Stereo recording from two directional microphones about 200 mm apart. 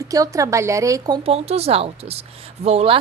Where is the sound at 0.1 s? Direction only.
15° right (ahead or behind).